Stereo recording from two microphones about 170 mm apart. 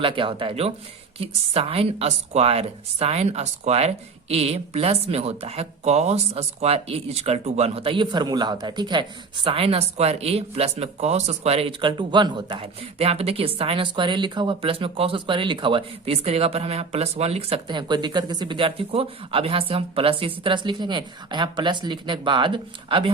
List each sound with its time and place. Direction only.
0.0 s a woman's voice: 30° right (ahead or behind)